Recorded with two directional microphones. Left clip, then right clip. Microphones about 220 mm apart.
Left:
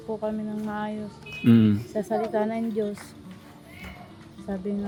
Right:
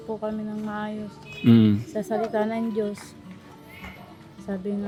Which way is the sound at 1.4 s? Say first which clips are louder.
Right 1 dB; 15° right (ahead or behind).